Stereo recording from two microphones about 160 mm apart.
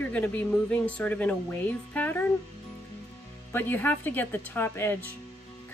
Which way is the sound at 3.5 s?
10° left (ahead or behind).